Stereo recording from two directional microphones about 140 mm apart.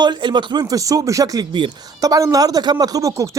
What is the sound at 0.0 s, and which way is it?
Speech, 35° right (ahead or behind).